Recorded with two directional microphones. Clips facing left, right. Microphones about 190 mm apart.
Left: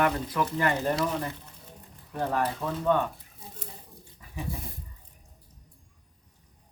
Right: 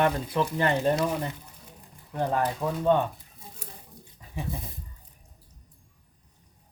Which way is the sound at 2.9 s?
25° right (ahead or behind).